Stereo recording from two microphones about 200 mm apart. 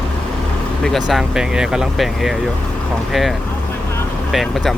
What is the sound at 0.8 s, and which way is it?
Speech, centre (ahead or behind).